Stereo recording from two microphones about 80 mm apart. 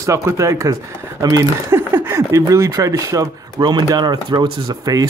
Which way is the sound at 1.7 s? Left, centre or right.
Right.